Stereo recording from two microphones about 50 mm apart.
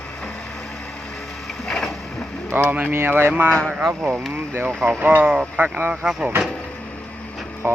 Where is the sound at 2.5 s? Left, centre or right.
Right.